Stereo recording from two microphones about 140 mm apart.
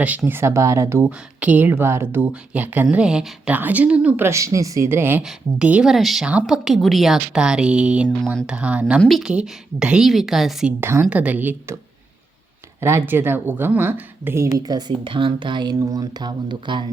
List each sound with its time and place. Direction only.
0.0 s speech: 10° right (ahead or behind)
4.3 s a woman's voice: 20° right (ahead or behind)
9.0 s a woman's voice: centre (ahead or behind)
10.8 s speech: 15° right (ahead or behind)
12.8 s speech: 15° right (ahead or behind)
14.6 s speech: 30° right (ahead or behind)